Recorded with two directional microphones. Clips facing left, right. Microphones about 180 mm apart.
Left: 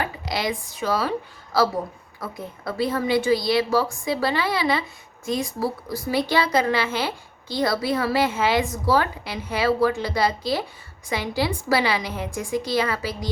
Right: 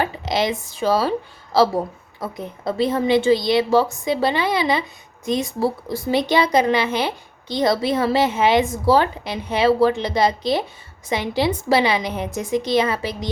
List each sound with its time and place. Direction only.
0.0 s a woman's voice: 25° right (ahead or behind)